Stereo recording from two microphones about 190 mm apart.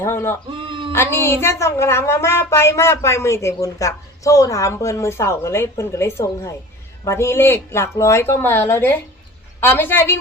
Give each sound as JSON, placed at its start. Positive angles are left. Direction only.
{"t": 0.0, "sound": "a woman's voice", "side_deg": 15}
{"t": 0.7, "sound": "a sound", "side_deg": -25}
{"t": 0.9, "sound": "a woman's voice", "side_deg": 15}